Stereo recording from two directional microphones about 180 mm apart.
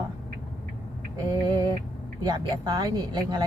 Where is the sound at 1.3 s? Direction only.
25° right (ahead or behind).